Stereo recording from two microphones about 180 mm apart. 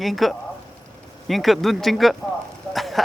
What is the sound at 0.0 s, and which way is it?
Speech, centre (ahead or behind).